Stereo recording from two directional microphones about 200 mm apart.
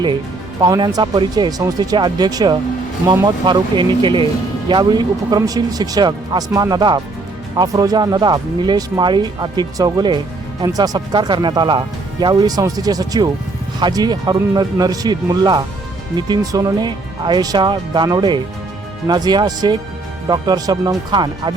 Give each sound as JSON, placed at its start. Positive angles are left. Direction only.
{"t": 0.6, "sound": "speech", "side_deg": -20}